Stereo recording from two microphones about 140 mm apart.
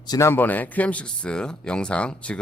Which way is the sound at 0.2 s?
15° left (ahead or behind).